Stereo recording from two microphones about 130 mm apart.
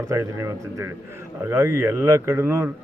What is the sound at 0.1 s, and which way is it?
Speech, 20° right (ahead or behind).